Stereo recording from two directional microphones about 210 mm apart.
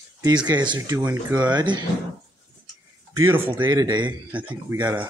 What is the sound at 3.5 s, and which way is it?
Speech, 20° right (ahead or behind).